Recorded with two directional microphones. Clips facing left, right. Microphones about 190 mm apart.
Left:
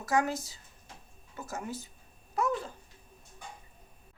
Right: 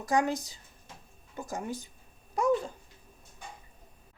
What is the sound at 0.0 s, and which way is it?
Speech, 15° right (ahead or behind).